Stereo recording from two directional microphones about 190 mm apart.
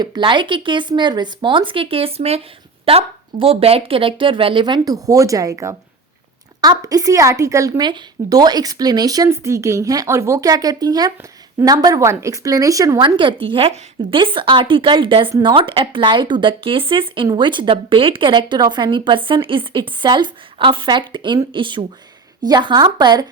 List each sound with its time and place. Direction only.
0.0 s speech: 25° right (ahead or behind)
3.4 s speech: 30° right (ahead or behind)